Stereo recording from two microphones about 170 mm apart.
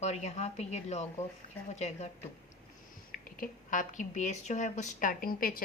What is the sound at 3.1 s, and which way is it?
Speech, 55° left (ahead or behind).